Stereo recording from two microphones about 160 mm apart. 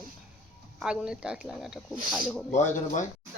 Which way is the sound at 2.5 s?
50° left (ahead or behind).